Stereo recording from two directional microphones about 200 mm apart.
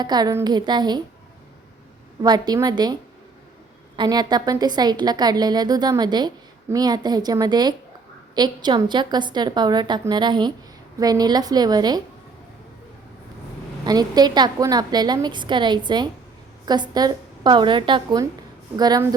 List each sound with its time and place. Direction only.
0.0 s a woman's voice: 20° right (ahead or behind)
2.2 s a woman's voice: 20° right (ahead or behind)
13.8 s a woman's voice: 20° right (ahead or behind)